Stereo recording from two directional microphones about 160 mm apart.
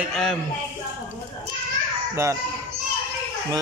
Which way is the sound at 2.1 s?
20° right (ahead or behind).